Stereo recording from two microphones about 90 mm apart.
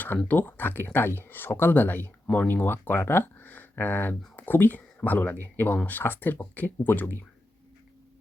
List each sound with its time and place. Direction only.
0.3 s speech: 20° left (ahead or behind)